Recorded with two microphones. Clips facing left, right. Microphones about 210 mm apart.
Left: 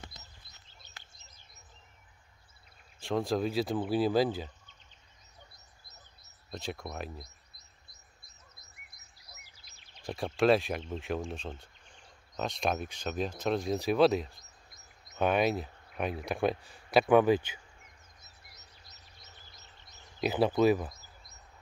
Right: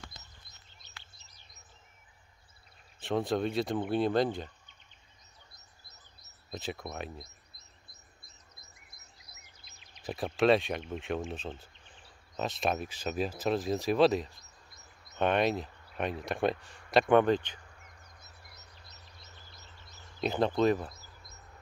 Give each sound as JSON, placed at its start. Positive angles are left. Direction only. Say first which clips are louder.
{"t": 0.8, "sound": "bird", "louder": "even", "side_deg": 50}
{"t": 3.0, "sound": "speech", "louder": "even", "side_deg": 0}
{"t": 6.5, "sound": "speech", "louder": "even", "side_deg": 0}
{"t": 9.2, "sound": "a sound", "louder": "left 1 dB", "side_deg": 30}
{"t": 10.0, "sound": "speech", "louder": "even", "side_deg": 0}
{"t": 14.4, "sound": "a sound", "louder": "right 1 dB", "side_deg": -60}
{"t": 15.1, "sound": "speech", "louder": "even", "side_deg": 0}
{"t": 18.2, "sound": "bird", "louder": "right 3 dB", "side_deg": -60}
{"t": 20.2, "sound": "speech", "louder": "left 2 dB", "side_deg": 5}